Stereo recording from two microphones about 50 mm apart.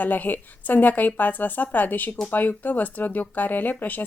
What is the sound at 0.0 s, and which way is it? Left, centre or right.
Speech, left.